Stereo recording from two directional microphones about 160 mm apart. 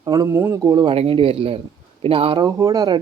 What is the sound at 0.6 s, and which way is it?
A man's voice, 25° right (ahead or behind).